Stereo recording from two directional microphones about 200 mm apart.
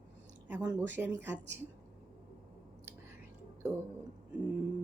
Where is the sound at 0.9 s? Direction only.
10° right (ahead or behind).